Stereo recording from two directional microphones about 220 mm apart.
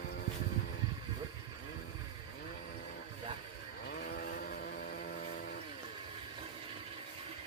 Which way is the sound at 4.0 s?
40° left (ahead or behind).